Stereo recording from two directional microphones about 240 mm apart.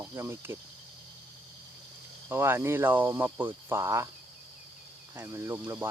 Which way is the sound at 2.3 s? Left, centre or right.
Centre.